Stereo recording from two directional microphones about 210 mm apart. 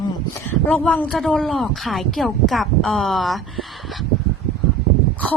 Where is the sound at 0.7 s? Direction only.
5° left (ahead or behind).